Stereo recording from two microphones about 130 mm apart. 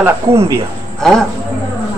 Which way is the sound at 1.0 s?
5° left (ahead or behind).